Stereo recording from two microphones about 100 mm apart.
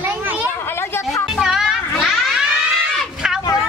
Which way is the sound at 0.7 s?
25° left (ahead or behind).